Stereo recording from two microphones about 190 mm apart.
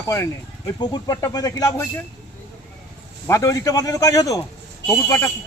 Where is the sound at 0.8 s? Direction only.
20° left (ahead or behind).